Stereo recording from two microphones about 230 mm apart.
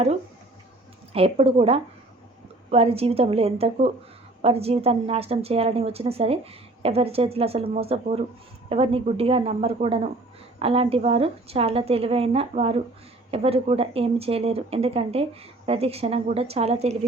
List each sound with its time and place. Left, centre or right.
1.1 s a woman's voice: right